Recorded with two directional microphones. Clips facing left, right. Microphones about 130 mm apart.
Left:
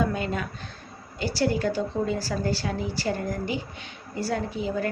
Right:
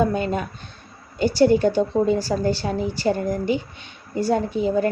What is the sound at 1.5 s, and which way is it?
A woman's voice, 25° right (ahead or behind).